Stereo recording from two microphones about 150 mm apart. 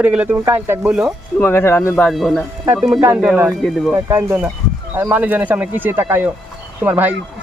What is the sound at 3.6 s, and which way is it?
Speech, centre (ahead or behind).